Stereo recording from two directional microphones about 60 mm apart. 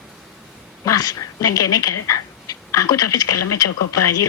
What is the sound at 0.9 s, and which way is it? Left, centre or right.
A woman's voice, left.